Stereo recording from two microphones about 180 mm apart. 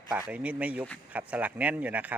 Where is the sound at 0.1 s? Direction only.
10° right (ahead or behind).